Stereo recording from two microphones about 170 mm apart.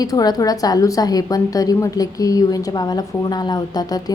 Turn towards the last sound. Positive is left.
turn(degrees=20)  # may be behind; listen again after turning